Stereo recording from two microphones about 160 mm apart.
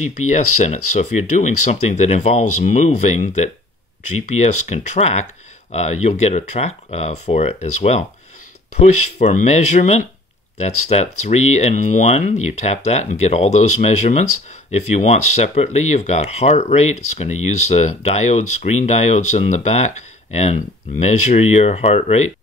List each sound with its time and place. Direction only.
0.0 s speech: 45° left (ahead or behind)